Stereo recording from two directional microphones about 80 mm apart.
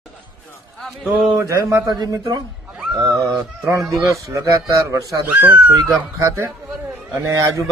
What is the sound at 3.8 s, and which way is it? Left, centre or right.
Speech, centre.